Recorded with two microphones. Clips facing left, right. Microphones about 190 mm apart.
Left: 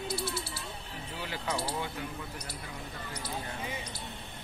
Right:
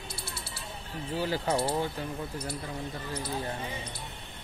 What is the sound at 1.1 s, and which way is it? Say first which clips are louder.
Speech: right 7 dB; 35° right (ahead or behind).